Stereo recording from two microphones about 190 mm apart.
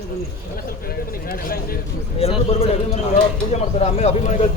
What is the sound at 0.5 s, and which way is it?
Speech, 50° left (ahead or behind).